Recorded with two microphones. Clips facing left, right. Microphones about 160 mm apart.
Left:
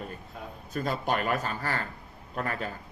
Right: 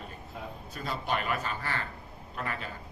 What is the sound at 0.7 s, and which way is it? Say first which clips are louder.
A man's voice: left 4 dB; 45° left (ahead or behind).